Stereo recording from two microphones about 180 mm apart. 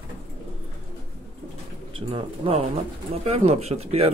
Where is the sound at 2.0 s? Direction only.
30° right (ahead or behind).